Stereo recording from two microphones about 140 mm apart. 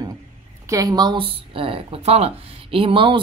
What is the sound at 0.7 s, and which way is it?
A woman's voice, 25° right (ahead or behind).